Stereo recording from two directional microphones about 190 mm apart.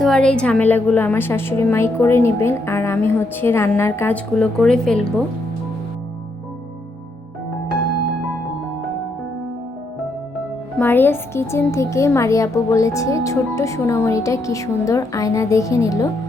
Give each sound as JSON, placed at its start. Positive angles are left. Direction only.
{"t": 0.0, "sound": "speech", "side_deg": 5}
{"t": 10.8, "sound": "speech", "side_deg": 10}